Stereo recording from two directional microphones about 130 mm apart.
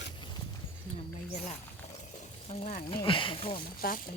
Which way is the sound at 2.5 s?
65° left (ahead or behind).